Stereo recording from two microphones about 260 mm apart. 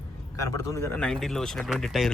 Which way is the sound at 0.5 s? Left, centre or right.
Centre.